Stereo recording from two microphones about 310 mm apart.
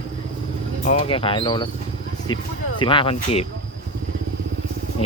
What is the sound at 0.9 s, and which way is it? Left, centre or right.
Speech, centre.